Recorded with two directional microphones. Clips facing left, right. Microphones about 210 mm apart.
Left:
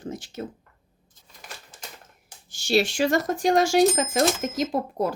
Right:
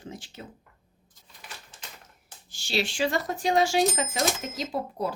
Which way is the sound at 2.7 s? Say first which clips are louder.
Left 6 dB; 45° left (ahead or behind).